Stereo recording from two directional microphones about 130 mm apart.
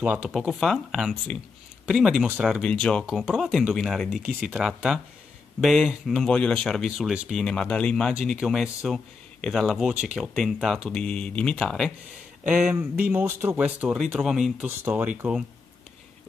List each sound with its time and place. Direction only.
0.0 s speech: 10° right (ahead or behind)
0.3 s speech: centre (ahead or behind)
2.7 s speech: 5° left (ahead or behind)
4.2 s speech: 10° right (ahead or behind)
13.2 s speech: 20° right (ahead or behind)